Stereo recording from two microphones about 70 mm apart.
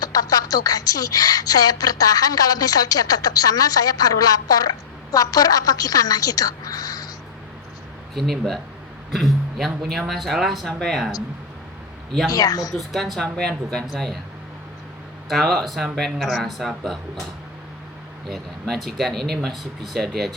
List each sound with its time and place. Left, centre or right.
0.0 s a woman's voice: left
8.1 s speech: centre
12.3 s a woman's voice: left
12.7 s speech: centre
15.3 s speech: centre
18.3 s speech: centre